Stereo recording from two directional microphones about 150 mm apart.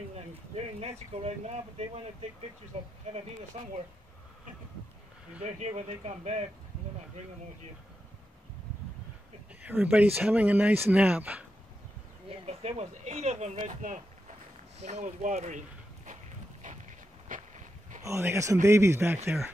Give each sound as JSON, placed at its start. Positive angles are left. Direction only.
{"t": 0.7, "sound": "speech", "side_deg": -45}
{"t": 5.4, "sound": "speech", "side_deg": -50}
{"t": 9.6, "sound": "speech", "side_deg": -10}
{"t": 12.3, "sound": "speech", "side_deg": -45}
{"t": 13.6, "sound": "speech", "side_deg": -60}
{"t": 16.6, "sound": "a sound", "side_deg": -60}
{"t": 17.3, "sound": "vehicle", "side_deg": -60}
{"t": 18.0, "sound": "speech", "side_deg": -20}